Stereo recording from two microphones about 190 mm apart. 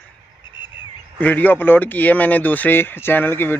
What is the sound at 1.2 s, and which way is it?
Speech, 10° left (ahead or behind).